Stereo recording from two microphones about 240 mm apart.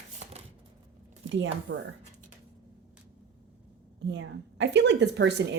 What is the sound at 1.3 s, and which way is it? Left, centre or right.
Speech, right.